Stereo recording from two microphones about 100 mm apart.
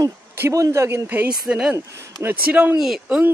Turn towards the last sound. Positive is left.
turn(degrees=-15)  # may be behind; listen again after turning